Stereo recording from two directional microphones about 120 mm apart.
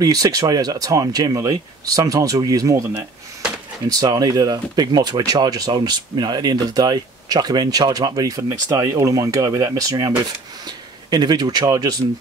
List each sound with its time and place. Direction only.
0.0 s speech: 30° right (ahead or behind)
2.9 s speech: 15° right (ahead or behind)
3.8 s speech: 30° right (ahead or behind)